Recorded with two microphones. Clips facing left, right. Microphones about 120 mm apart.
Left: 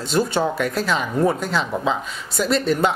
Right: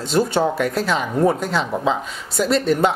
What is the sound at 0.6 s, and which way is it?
Speech, 45° right (ahead or behind).